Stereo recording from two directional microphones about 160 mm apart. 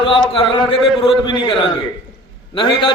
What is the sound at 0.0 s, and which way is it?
A man's voice, 30° left (ahead or behind).